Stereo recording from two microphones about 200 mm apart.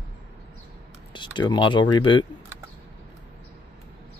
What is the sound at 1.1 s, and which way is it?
Speech, 25° left (ahead or behind).